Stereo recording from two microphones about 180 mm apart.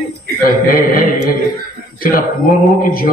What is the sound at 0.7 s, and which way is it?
Mantra, 55° left (ahead or behind).